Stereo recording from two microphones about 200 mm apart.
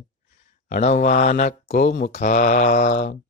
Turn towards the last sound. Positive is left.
turn(degrees=40)  # may be behind; listen again after turning